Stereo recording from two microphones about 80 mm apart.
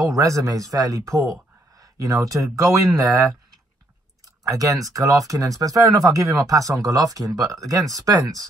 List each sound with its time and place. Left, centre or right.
0.0 s speech: right
4.5 s speech: right